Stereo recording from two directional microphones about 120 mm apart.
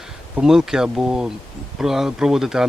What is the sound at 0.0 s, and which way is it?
Speech, 5° right (ahead or behind).